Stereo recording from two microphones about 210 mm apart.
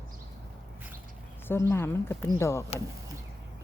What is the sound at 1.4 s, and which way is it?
Speech, 10° left (ahead or behind).